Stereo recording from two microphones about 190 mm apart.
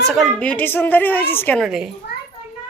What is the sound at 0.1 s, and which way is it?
A woman's voice, centre (ahead or behind).